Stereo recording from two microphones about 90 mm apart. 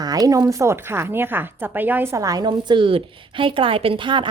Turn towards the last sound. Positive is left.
turn(degrees=-60)  # may be behind; listen again after turning